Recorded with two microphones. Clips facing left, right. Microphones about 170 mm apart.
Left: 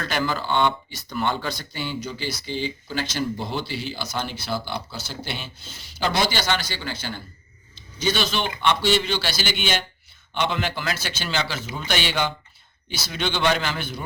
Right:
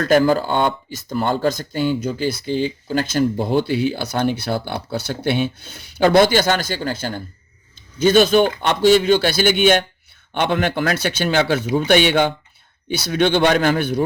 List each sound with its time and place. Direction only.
0.0 s speech: 45° right (ahead or behind)